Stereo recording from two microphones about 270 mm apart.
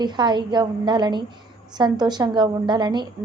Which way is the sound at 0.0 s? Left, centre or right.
Centre.